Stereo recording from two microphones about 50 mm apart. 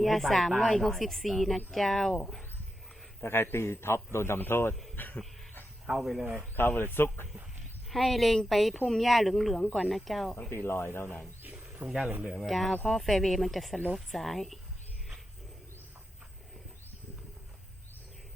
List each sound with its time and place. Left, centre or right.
0.0 s speech: centre
3.2 s a man's voice: left
4.7 s speech: centre
6.6 s speech: left
7.9 s speech: centre
10.5 s speech: left
11.0 s speech: left
11.8 s speech: right
12.3 s speech: centre